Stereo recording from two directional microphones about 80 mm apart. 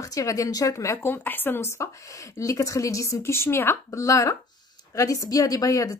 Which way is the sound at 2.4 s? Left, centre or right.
Left.